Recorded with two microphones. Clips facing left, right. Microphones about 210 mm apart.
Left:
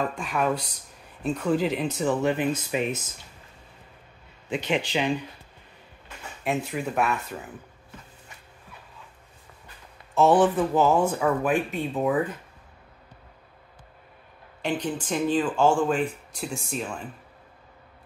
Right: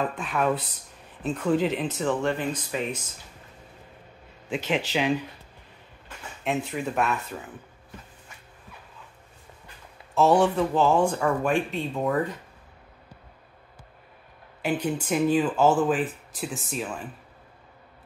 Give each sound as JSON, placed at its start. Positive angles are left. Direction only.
{"t": 0.0, "sound": "speech", "side_deg": -5}
{"t": 2.7, "sound": "speech", "side_deg": 15}
{"t": 4.5, "sound": "speech", "side_deg": 0}
{"t": 6.4, "sound": "speech", "side_deg": 0}
{"t": 10.1, "sound": "speech", "side_deg": 0}
{"t": 14.6, "sound": "speech", "side_deg": -10}